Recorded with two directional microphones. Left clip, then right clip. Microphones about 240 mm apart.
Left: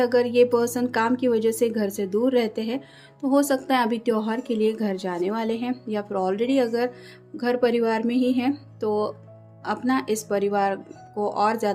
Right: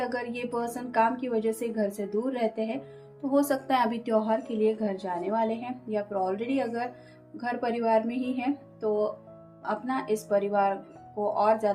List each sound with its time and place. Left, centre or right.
0.0 s a woman's voice: left